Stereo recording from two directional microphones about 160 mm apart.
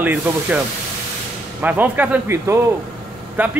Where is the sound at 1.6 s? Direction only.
10° right (ahead or behind).